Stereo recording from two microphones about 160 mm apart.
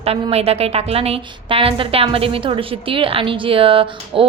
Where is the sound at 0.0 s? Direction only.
40° right (ahead or behind).